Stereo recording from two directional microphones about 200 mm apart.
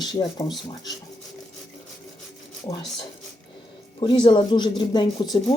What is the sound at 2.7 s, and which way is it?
Speech, 25° left (ahead or behind).